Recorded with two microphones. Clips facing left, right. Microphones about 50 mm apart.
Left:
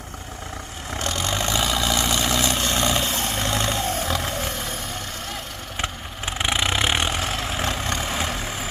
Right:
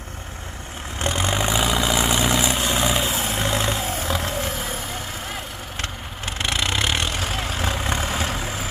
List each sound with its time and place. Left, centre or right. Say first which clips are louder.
0.9 s vehicle: right 2 dB; right; by 4.9 s centre
5.8 s vehicle: left 3 dB; centre
7.2 s vehicle: even; centre